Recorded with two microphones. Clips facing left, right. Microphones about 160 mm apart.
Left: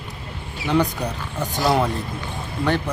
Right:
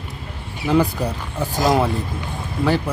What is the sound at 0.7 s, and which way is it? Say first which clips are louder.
Speech: right 3 dB; 5° right (ahead or behind).